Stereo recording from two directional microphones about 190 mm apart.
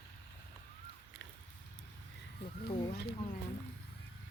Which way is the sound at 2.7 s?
30° left (ahead or behind).